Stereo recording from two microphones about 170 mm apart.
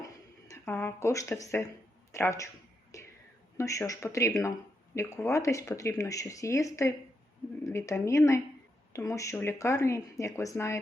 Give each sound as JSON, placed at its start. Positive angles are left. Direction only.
{"t": 0.0, "sound": "a sound", "side_deg": 20}
{"t": 2.1, "sound": "speech", "side_deg": 15}
{"t": 2.9, "sound": "whispering", "side_deg": 20}
{"t": 3.6, "sound": "speech", "side_deg": 15}